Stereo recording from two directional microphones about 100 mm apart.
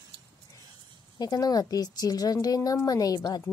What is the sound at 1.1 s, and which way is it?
A woman's voice, 40° left (ahead or behind).